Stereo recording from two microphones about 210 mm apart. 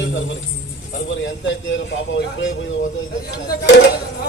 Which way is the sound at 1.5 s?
65° left (ahead or behind).